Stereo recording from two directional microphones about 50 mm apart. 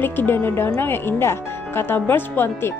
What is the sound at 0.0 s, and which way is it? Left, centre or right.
Speech, left.